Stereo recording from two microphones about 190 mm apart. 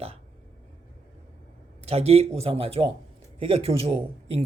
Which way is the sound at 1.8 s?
30° right (ahead or behind).